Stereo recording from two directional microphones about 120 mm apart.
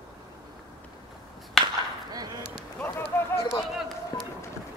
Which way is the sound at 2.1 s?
35° right (ahead or behind).